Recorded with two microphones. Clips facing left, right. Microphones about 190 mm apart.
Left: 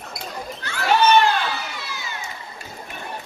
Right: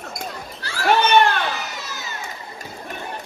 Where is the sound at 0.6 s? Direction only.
35° right (ahead or behind).